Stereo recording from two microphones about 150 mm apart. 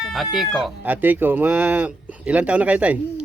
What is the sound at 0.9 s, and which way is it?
A man's voice, 10° right (ahead or behind).